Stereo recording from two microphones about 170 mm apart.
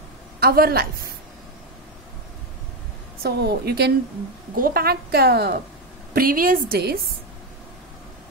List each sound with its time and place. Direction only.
0.4 s a woman's voice: 65° right (ahead or behind)
3.2 s a woman's voice: 70° right (ahead or behind)
4.6 s a woman's voice: 60° right (ahead or behind)
6.1 s a woman's voice: 55° right (ahead or behind)